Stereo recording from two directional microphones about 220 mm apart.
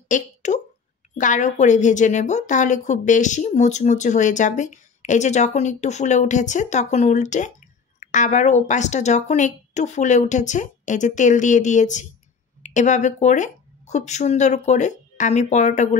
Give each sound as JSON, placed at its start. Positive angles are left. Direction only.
{"t": 0.1, "sound": "a woman's voice", "side_deg": 35}